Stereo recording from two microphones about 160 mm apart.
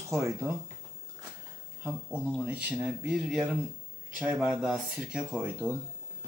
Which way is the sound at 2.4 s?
10° right (ahead or behind).